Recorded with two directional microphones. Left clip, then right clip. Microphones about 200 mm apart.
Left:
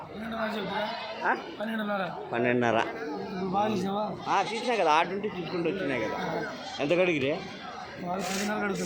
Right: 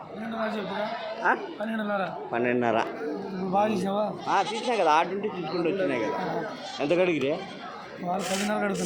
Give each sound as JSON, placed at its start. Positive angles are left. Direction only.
{"t": 1.2, "sound": "speech", "side_deg": -10}
{"t": 3.5, "sound": "speech", "side_deg": -30}
{"t": 4.7, "sound": "speech", "side_deg": 0}
{"t": 8.2, "sound": "speech", "side_deg": -55}
{"t": 8.4, "sound": "speech", "side_deg": -30}